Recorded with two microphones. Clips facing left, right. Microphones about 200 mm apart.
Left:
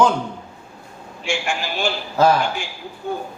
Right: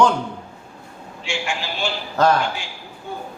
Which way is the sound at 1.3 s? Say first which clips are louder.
Left 3 dB; 50° left (ahead or behind).